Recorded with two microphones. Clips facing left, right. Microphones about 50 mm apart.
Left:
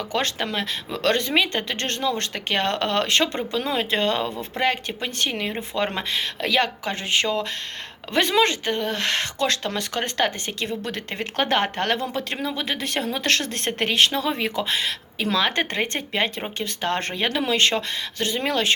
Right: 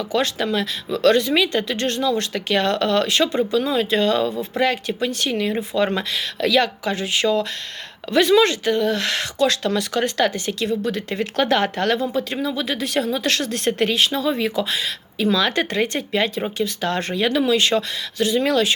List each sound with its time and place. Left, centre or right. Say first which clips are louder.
0.0 s speech: right 4 dB; left
12.1 s speech: right 4 dB; left
12.5 s speech: right 3 dB; left
15.4 s speech: right 3 dB; left